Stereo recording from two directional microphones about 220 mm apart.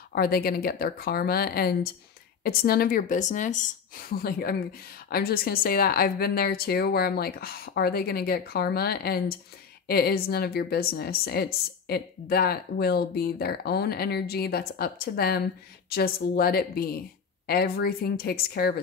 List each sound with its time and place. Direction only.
0.1 s a woman's voice: 45° left (ahead or behind)